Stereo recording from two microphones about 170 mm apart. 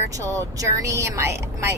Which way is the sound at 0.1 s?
20° right (ahead or behind).